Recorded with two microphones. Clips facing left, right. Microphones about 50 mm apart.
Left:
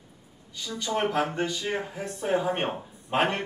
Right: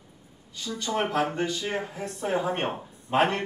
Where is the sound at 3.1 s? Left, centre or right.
Centre.